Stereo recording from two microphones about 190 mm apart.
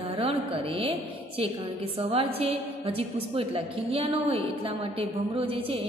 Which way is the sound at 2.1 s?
30° right (ahead or behind).